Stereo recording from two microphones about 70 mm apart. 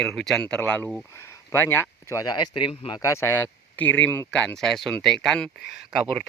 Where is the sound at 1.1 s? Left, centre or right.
Left.